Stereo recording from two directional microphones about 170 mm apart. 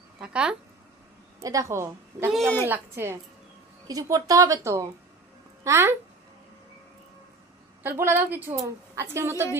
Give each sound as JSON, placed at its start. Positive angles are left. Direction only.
{"t": 0.2, "sound": "speech", "side_deg": -5}
{"t": 1.4, "sound": "a woman's voice", "side_deg": -20}
{"t": 7.8, "sound": "a woman's voice", "side_deg": -10}